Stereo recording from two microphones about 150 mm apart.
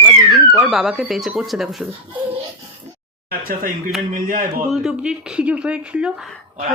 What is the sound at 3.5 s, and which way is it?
Speech, 65° right (ahead or behind).